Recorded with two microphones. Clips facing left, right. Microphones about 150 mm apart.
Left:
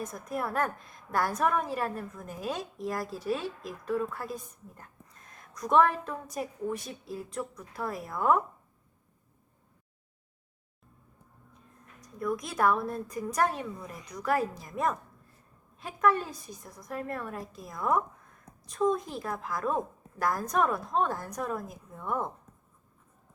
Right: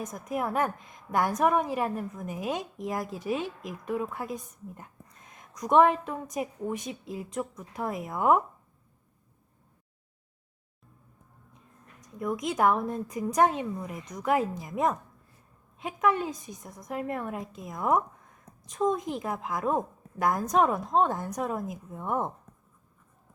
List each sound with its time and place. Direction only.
0.0 s a woman's voice: 20° right (ahead or behind)
11.9 s a woman's voice: 20° right (ahead or behind)